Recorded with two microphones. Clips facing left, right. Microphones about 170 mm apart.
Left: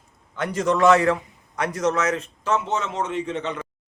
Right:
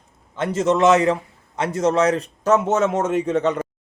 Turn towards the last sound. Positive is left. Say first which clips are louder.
# right 7 dB
turn(degrees=-45)  # may be behind; listen again after turning